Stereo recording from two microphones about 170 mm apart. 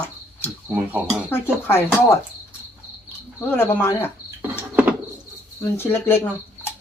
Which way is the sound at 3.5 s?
15° left (ahead or behind).